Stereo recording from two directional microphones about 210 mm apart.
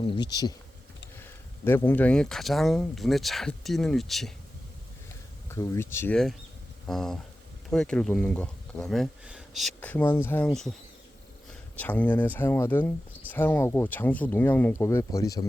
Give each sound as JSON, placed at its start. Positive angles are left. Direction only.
{"t": 0.0, "sound": "speech", "side_deg": 20}
{"t": 5.5, "sound": "speech", "side_deg": 10}
{"t": 11.8, "sound": "speech", "side_deg": 5}